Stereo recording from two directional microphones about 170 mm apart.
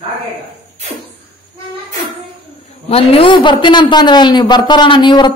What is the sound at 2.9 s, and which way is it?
A man's voice, 35° left (ahead or behind).